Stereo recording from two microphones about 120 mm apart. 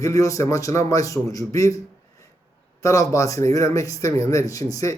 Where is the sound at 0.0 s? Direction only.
25° left (ahead or behind).